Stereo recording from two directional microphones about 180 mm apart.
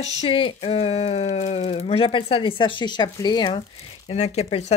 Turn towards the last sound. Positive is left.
turn(degrees=35)  # may be behind; listen again after turning